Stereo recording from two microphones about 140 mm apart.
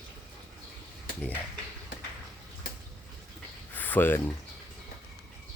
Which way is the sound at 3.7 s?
15° left (ahead or behind).